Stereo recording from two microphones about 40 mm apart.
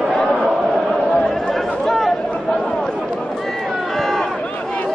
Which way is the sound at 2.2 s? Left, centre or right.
Left.